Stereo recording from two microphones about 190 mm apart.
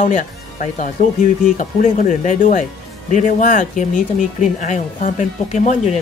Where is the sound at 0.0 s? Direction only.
40° left (ahead or behind).